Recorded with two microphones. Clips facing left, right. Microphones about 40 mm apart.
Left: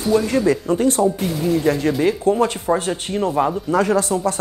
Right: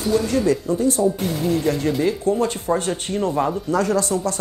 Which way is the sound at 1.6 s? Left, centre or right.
Centre.